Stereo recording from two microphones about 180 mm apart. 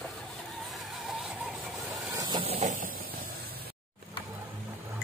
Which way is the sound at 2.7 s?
50° right (ahead or behind).